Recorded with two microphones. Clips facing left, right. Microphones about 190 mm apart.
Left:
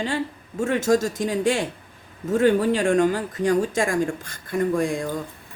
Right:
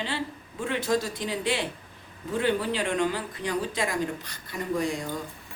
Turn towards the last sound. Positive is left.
turn(degrees=50)  # may be behind; listen again after turning